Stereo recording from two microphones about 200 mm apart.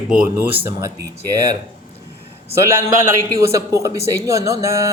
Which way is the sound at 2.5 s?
15° right (ahead or behind).